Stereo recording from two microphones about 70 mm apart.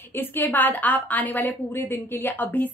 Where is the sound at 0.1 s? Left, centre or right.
Left.